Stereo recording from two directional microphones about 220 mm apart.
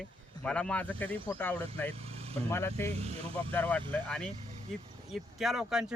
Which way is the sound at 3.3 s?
10° left (ahead or behind).